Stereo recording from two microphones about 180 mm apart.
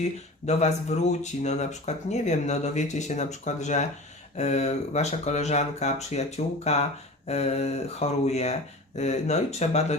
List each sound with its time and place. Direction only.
0.0 s speech: 40° left (ahead or behind)